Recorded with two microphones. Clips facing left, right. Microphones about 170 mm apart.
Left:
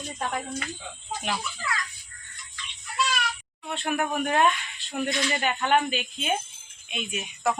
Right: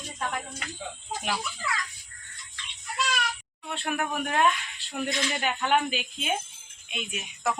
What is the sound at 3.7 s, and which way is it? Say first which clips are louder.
Speech: left 3 dB; centre (ahead or behind).